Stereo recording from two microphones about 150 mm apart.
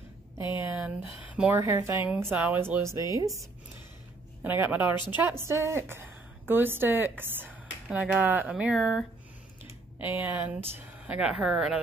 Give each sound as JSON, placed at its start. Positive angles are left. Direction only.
{"t": 0.4, "sound": "a woman's voice", "side_deg": 30}
{"t": 0.7, "sound": "speech", "side_deg": -10}
{"t": 1.6, "sound": "speech", "side_deg": -20}
{"t": 4.4, "sound": "a woman's voice", "side_deg": -10}